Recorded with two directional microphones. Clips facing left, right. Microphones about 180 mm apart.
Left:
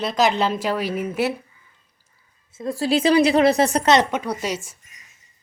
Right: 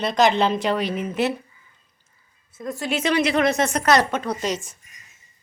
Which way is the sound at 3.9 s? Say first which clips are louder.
Left 1 dB; 15° left (ahead or behind).